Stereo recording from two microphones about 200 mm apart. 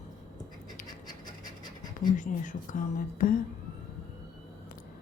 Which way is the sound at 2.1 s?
40° left (ahead or behind).